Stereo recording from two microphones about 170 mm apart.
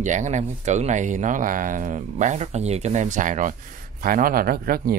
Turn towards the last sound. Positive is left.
turn(degrees=-60)  # may be behind; listen again after turning